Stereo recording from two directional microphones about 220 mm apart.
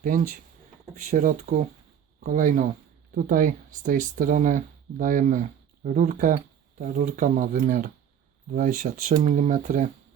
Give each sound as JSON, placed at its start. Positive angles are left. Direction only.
{"t": 0.9, "sound": "speech", "side_deg": -35}